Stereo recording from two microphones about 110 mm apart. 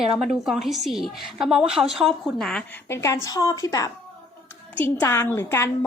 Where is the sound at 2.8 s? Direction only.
25° left (ahead or behind).